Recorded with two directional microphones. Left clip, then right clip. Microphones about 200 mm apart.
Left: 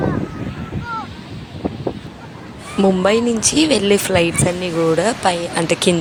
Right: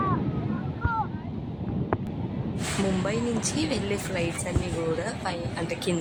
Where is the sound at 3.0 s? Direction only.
45° left (ahead or behind).